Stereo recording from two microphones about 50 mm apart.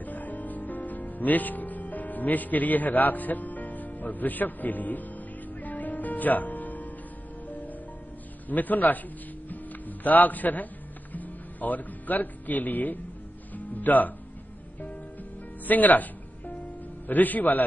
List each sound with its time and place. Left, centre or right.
0.0 s music: left
8.5 s a man's voice: left
9.5 s music: left
11.1 s speech: left
15.6 s music: left
17.1 s a man's voice: left